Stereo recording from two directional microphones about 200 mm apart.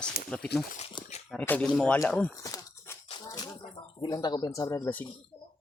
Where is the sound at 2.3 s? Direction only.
15° left (ahead or behind).